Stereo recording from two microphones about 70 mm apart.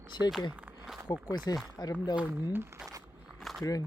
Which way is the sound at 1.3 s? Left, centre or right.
Left.